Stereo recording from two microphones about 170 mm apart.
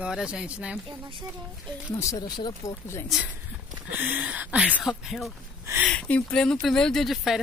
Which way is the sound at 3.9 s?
10° right (ahead or behind).